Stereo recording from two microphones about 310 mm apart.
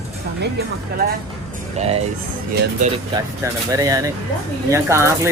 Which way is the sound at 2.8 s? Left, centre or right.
Centre.